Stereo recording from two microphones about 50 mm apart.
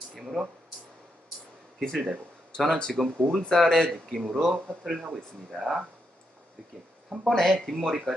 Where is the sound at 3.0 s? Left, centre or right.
Centre.